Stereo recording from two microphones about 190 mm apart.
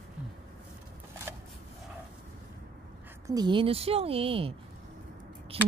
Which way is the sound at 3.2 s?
20° right (ahead or behind).